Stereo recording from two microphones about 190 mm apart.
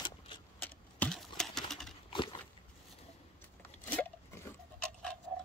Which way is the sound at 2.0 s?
25° left (ahead or behind).